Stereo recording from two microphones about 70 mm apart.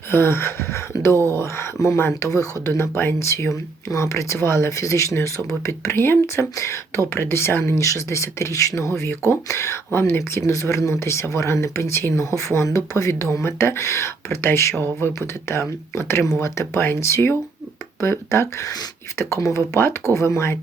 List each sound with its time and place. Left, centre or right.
0.1 s speech: left
5.9 s speech: left
7.1 s speech: left